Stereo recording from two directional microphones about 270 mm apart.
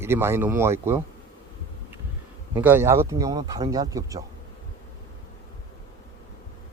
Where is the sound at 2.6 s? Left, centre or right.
Centre.